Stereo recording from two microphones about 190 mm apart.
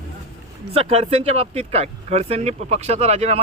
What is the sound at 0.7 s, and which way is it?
Speech, 30° right (ahead or behind).